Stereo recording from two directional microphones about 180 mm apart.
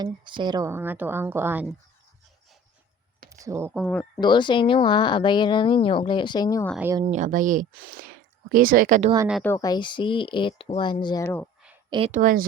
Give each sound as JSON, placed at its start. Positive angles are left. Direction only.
{"t": 0.0, "sound": "a woman's voice", "side_deg": -25}
{"t": 3.2, "sound": "a sound", "side_deg": -15}
{"t": 3.8, "sound": "speech", "side_deg": 5}
{"t": 4.2, "sound": "speech", "side_deg": 25}
{"t": 7.0, "sound": "speech", "side_deg": -40}
{"t": 9.4, "sound": "speech", "side_deg": 15}
{"t": 11.9, "sound": "speech", "side_deg": -35}
{"t": 12.2, "sound": "speech", "side_deg": -50}